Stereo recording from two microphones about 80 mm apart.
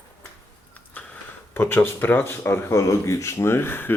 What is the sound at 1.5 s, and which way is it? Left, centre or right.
Speech, left.